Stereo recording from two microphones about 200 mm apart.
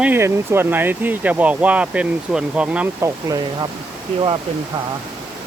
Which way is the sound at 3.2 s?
20° right (ahead or behind).